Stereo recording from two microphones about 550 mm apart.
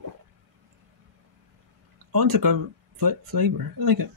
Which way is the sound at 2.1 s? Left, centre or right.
Right.